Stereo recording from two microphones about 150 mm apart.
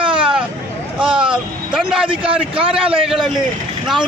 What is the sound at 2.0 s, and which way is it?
Speech, 35° right (ahead or behind).